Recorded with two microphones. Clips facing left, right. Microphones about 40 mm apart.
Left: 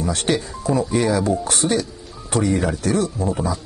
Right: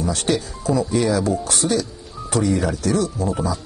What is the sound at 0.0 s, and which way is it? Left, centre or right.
Speech, left.